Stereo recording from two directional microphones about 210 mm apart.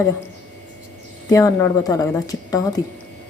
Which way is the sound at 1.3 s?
15° left (ahead or behind).